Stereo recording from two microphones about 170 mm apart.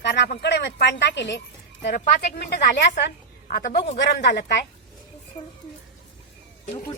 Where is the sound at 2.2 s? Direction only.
80° left.